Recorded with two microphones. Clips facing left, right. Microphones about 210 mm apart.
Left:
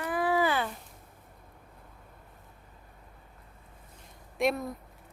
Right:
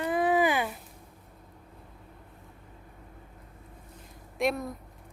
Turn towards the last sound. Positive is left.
turn(degrees=0)  # may be behind; listen again after turning